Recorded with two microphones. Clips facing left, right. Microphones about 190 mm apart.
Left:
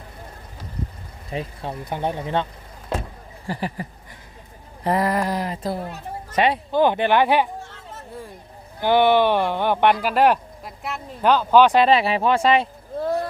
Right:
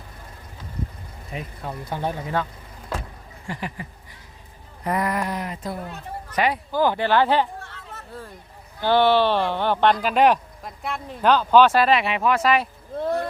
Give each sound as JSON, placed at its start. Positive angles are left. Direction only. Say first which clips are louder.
{"t": 1.3, "sound": "speech", "louder": "left 4 dB", "side_deg": 30}
{"t": 3.4, "sound": "speech", "louder": "left 4 dB", "side_deg": 35}
{"t": 8.8, "sound": "speech", "louder": "left 1 dB", "side_deg": 15}
{"t": 11.9, "sound": "speech", "louder": "left 2 dB", "side_deg": 30}